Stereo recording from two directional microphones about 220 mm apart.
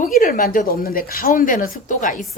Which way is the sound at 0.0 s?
35° left (ahead or behind).